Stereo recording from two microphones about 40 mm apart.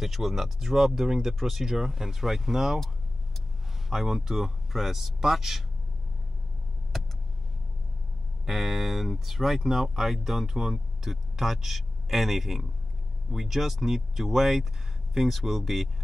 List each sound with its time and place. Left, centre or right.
0.0 s speech: centre
3.9 s speech: centre
6.9 s vehicle: centre
8.5 s speech: centre